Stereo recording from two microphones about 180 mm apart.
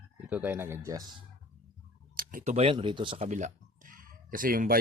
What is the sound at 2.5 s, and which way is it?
Speech, 30° right (ahead or behind).